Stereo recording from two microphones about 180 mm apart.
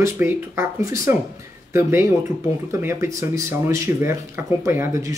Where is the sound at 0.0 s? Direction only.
15° right (ahead or behind).